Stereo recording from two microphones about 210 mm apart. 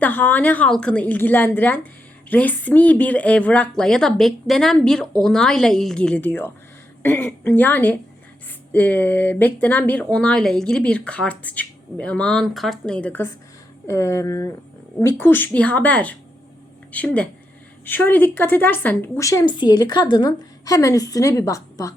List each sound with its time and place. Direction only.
0.0 s a woman's voice: 10° left (ahead or behind)